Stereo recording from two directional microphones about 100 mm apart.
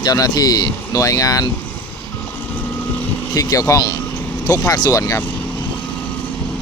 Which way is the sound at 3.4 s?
35° left (ahead or behind).